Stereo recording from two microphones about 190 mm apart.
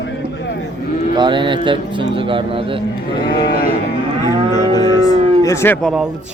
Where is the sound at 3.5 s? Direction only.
50° left (ahead or behind).